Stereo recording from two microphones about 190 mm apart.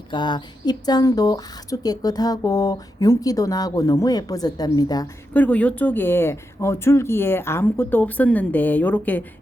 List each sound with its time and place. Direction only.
0.1 s speech: 25° left (ahead or behind)
5.3 s speech: 5° left (ahead or behind)